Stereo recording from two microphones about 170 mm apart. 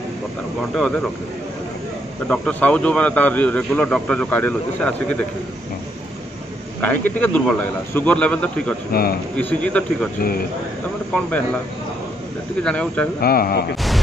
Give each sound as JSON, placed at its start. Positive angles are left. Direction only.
{"t": 2.2, "sound": "a man's voice", "side_deg": 5}
{"t": 6.8, "sound": "a man's voice", "side_deg": 10}
{"t": 8.9, "sound": "speech", "side_deg": 65}
{"t": 9.4, "sound": "a man's voice", "side_deg": 10}
{"t": 12.6, "sound": "a man's voice", "side_deg": 5}
{"t": 13.2, "sound": "speech", "side_deg": 60}